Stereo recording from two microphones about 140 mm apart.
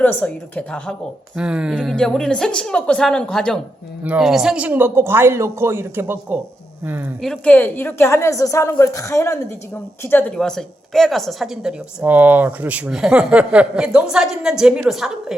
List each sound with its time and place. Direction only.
0.0 s a woman's voice: 10° left (ahead or behind)
1.4 s speech: 5° right (ahead or behind)
1.7 s a woman's voice: 5° left (ahead or behind); by 6.4 s 15° right (ahead or behind)
7.2 s a woman's voice: 5° left (ahead or behind)